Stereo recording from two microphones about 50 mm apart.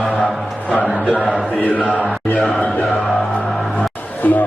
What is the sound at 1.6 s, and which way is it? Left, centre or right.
Chant, left.